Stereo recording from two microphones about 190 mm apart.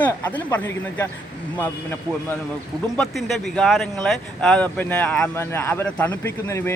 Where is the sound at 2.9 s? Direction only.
Centre (ahead or behind).